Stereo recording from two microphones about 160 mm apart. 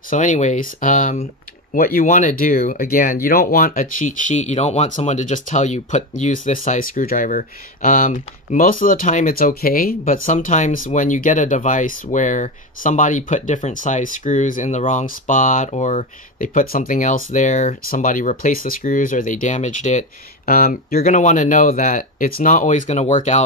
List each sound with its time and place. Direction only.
0.1 s speech: 50° left (ahead or behind)
1.7 s speech: 65° left (ahead or behind); by 20.1 s 50° left (ahead or behind)
20.4 s speech: 65° left (ahead or behind); by 23.4 s 45° left (ahead or behind)